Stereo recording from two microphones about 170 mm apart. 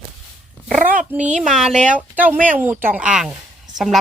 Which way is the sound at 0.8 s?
55° right (ahead or behind).